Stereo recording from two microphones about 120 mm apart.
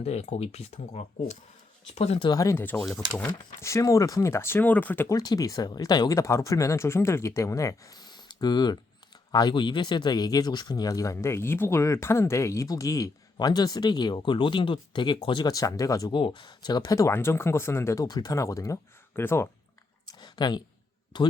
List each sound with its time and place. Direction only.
0.0 s speech: 60° left (ahead or behind)
2.2 s speech: 30° left (ahead or behind)
5.1 s speech: 30° left (ahead or behind)
16.1 s speech: 40° left (ahead or behind); by 19.5 s 20° left (ahead or behind)
20.2 s a sound: 35° left (ahead or behind)
21.1 s speech: 35° left (ahead or behind)